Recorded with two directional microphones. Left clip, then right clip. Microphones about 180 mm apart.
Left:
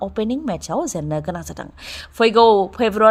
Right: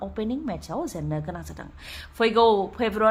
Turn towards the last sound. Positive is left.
turn(degrees=35)  # may be behind; listen again after turning